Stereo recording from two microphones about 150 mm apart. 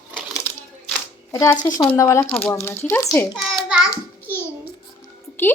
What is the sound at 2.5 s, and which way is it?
Speech, 15° left (ahead or behind).